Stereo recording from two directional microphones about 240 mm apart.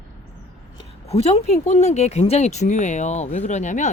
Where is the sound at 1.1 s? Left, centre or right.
Left.